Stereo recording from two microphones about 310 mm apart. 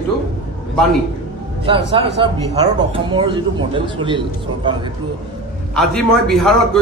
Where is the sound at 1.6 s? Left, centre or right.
Centre.